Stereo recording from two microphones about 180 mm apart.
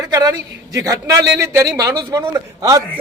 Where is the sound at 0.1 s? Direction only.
20° right (ahead or behind).